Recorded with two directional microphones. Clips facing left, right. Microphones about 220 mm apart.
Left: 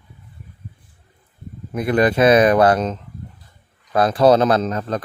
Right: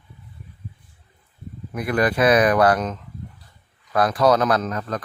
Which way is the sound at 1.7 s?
25° left (ahead or behind).